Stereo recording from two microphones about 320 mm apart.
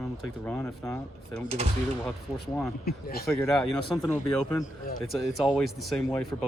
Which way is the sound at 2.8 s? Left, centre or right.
Left.